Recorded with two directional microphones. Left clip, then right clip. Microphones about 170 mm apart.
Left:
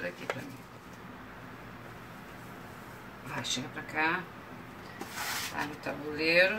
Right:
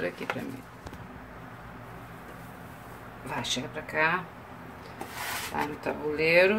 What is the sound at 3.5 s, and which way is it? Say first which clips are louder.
Speech: right 3 dB; 60° right (ahead or behind).